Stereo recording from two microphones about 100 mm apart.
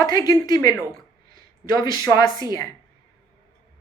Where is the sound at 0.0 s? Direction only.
40° left (ahead or behind).